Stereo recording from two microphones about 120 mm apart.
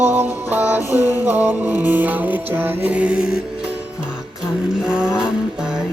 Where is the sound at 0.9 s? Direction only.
15° right (ahead or behind).